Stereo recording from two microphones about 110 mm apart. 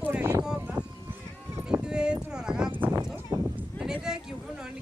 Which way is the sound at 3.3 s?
25° right (ahead or behind).